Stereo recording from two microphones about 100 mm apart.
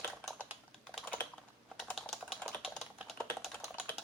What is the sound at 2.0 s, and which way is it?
Typing, centre (ahead or behind).